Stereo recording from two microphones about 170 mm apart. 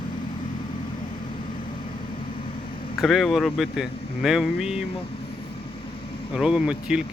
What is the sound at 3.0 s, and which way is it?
Speech, centre (ahead or behind).